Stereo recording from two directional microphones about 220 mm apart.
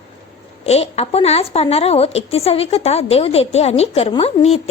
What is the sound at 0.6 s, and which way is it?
A woman's voice, 30° left (ahead or behind).